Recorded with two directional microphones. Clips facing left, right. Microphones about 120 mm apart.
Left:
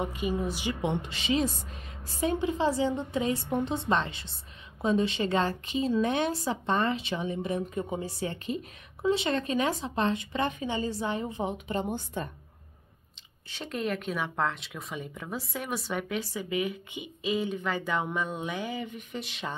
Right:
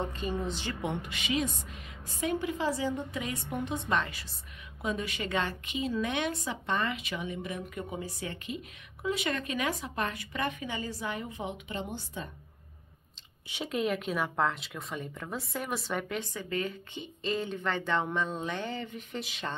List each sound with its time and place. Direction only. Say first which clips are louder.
0.0 s a woman's voice: left 3 dB; 10° left (ahead or behind)
0.8 s a woman's voice: left 4 dB; 30° left (ahead or behind); by 12.3 s 50° left (ahead or behind)
13.7 s speech: right 1 dB; centre (ahead or behind)